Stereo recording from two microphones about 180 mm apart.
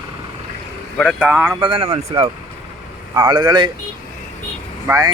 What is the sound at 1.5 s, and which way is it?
Speech, 30° right (ahead or behind).